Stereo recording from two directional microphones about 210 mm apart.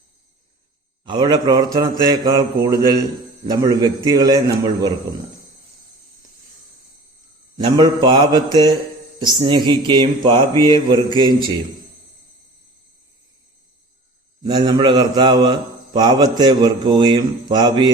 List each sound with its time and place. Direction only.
1.0 s a man's voice: 20° right (ahead or behind)
7.6 s a man's voice: 20° right (ahead or behind)
14.4 s a man's voice: 20° right (ahead or behind)